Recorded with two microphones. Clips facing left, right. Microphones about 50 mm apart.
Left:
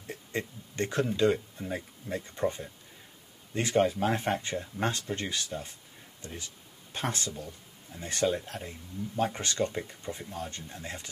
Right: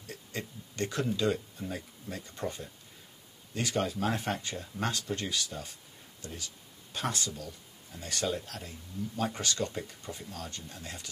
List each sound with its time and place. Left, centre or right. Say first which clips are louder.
0.0 s speech: left 5 dB; left